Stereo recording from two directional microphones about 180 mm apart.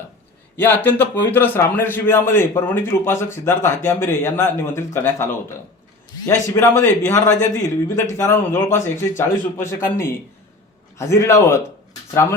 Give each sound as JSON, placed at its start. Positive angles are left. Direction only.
{"t": 0.5, "sound": "a man's voice", "side_deg": 10}